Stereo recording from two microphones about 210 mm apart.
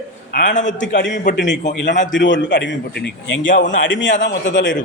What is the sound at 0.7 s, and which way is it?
A man's voice, 60° left (ahead or behind).